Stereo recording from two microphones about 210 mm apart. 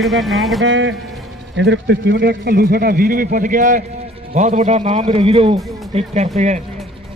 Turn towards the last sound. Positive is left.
turn(degrees=-35)  # may be behind; listen again after turning